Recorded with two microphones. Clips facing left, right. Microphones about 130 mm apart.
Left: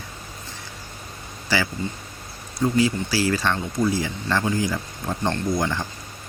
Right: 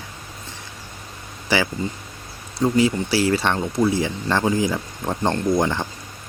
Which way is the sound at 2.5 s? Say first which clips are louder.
Right 2 dB; 25° right (ahead or behind).